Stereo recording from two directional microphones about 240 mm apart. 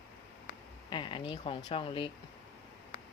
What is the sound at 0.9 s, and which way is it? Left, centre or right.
Speech, centre.